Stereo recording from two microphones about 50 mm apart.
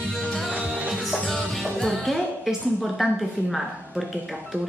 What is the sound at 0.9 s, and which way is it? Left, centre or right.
Music, centre.